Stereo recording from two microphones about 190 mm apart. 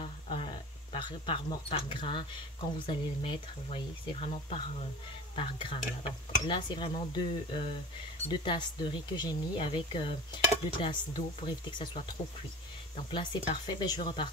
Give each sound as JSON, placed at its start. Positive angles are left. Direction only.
{"t": 0.0, "sound": "a sound", "side_deg": 30}
{"t": 2.9, "sound": "speech", "side_deg": 25}
{"t": 13.1, "sound": "speech", "side_deg": 25}